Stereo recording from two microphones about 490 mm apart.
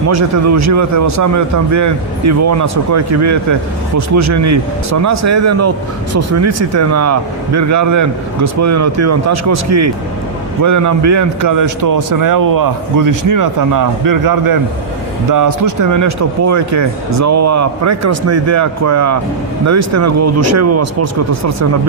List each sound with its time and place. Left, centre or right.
0.1 s a man's voice: right